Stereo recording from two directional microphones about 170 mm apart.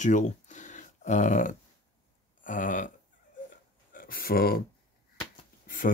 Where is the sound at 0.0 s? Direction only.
45° left (ahead or behind).